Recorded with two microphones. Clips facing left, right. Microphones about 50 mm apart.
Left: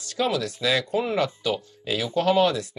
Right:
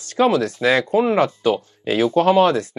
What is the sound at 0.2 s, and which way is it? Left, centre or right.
Speech, right.